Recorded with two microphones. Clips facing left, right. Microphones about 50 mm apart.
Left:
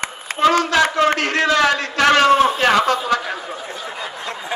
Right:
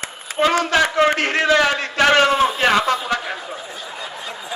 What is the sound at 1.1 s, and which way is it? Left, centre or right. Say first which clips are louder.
Speech: even; right.